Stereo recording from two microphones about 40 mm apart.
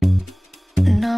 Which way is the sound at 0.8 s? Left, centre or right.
Centre.